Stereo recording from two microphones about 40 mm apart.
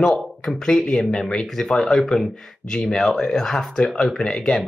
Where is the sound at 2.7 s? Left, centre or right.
Left.